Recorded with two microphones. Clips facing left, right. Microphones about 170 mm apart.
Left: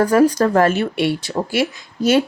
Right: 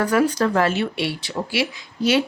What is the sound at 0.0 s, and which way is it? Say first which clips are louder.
Speech: left 5 dB; 40° left (ahead or behind).